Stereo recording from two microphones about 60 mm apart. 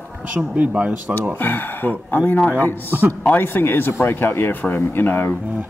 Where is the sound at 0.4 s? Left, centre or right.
Right.